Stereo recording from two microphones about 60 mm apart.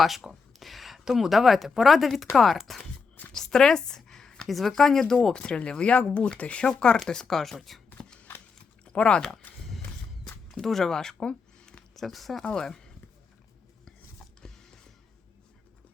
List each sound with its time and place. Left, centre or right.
0.0 s a woman's voice: centre
7.9 s shuffling cards: centre
8.8 s speech: centre
10.5 s speech: centre
11.9 s a woman's voice: centre
14.4 s music: centre